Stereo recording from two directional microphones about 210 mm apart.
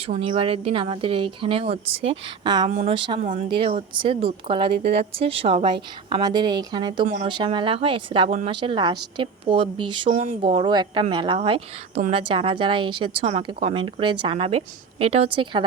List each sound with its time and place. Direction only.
0.0 s speech: 25° right (ahead or behind)
2.6 s speech: 30° right (ahead or behind)